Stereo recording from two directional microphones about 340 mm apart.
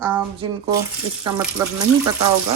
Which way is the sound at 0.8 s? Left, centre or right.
Centre.